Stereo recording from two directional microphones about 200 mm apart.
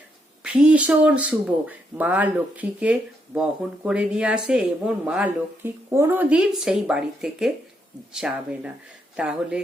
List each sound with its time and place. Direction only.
0.4 s speech: 5° right (ahead or behind)